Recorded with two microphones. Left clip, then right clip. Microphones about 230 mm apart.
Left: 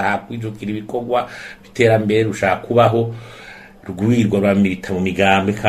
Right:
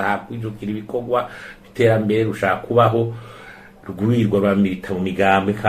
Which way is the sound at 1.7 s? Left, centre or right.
Left.